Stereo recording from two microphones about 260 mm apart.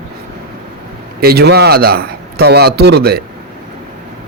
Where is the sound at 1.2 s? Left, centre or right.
Right.